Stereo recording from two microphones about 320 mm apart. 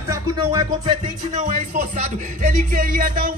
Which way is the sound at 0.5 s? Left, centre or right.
Centre.